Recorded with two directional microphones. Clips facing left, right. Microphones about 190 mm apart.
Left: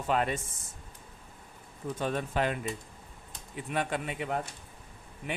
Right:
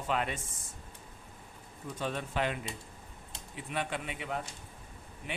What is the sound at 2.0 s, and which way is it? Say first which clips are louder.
Speech: left 3 dB; 50° left (ahead or behind).